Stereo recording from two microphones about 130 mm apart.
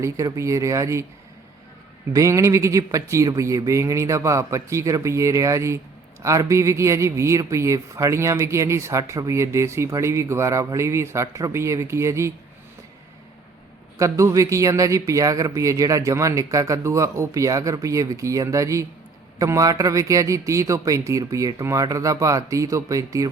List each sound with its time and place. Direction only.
0.0 s speech: 25° right (ahead or behind)
2.1 s speech: 25° right (ahead or behind)
14.0 s speech: 25° right (ahead or behind)